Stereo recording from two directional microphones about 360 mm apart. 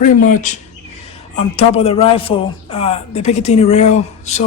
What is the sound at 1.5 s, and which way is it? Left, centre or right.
Speech, centre.